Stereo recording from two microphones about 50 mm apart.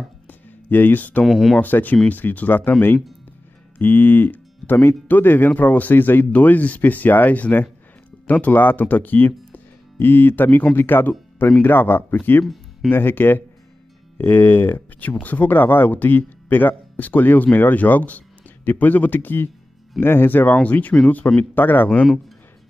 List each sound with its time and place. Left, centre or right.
0.3 s a sound: left
1.2 s speech: centre
1.6 s speech: left
3.7 s speech: left
21.4 s speech: left